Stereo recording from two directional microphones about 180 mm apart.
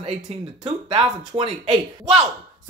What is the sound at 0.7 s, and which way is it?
Speech, 30° right (ahead or behind).